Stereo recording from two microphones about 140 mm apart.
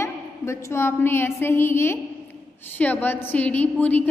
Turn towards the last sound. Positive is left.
turn(degrees=10)  # may be behind; listen again after turning